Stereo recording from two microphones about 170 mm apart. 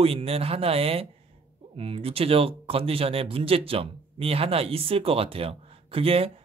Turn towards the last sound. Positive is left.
turn(degrees=-35)  # may be behind; listen again after turning